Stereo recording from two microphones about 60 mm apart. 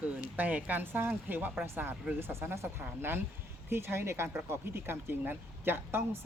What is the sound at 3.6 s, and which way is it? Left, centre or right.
Speech, right.